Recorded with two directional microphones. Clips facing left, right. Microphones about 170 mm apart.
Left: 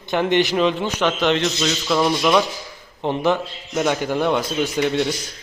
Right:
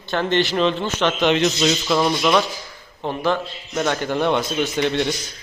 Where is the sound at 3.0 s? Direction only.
20° left (ahead or behind).